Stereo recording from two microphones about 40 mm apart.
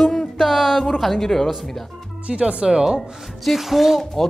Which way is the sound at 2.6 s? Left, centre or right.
Centre.